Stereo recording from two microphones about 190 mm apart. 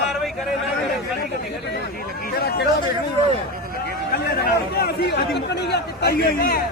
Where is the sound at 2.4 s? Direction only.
55° left (ahead or behind).